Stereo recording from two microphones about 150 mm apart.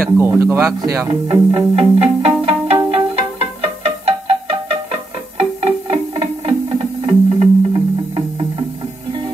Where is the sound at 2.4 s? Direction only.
40° right (ahead or behind).